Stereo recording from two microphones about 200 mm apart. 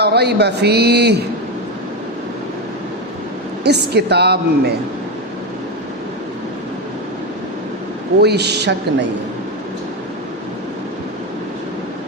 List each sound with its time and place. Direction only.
0.0 s a man's voice: 55° right (ahead or behind)
3.6 s a man's voice: 55° right (ahead or behind)
8.2 s a man's voice: 55° right (ahead or behind)